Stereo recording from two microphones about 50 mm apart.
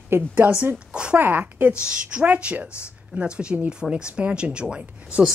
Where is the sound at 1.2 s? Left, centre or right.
Right; by 5.3 s centre.